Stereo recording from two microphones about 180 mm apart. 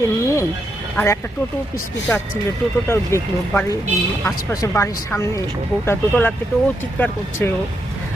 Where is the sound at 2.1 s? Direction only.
15° left (ahead or behind).